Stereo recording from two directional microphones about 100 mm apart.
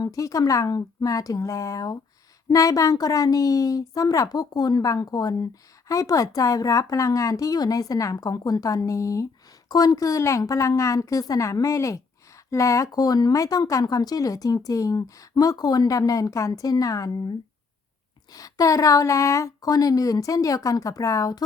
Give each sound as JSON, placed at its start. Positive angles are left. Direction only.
{"t": 0.0, "sound": "speech", "side_deg": 35}